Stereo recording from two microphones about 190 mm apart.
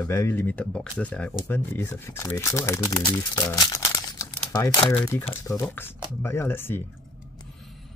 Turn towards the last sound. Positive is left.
turn(degrees=10)  # may be behind; listen again after turning